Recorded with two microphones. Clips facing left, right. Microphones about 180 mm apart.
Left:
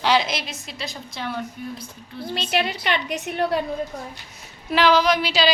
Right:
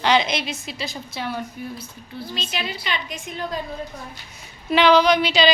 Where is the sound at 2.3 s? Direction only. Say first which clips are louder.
Left 7 dB; 65° left (ahead or behind).